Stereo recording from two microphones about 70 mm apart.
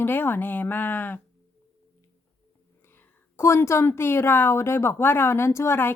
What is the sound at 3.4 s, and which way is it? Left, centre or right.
A woman's voice, left.